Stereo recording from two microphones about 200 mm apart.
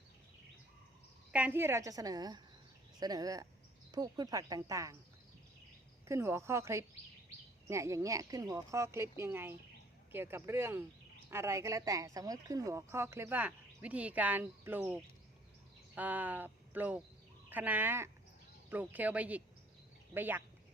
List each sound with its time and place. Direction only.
1.3 s a woman's voice: 5° right (ahead or behind)
6.1 s a woman's voice: 15° right (ahead or behind)